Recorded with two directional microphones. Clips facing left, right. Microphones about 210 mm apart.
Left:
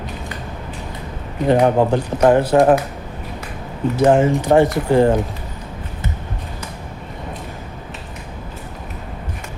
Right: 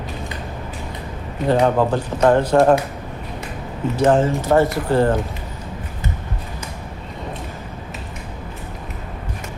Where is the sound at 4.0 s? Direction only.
15° left (ahead or behind).